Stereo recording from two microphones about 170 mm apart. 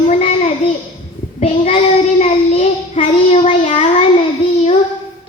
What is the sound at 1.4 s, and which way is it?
Child singing, 35° left (ahead or behind).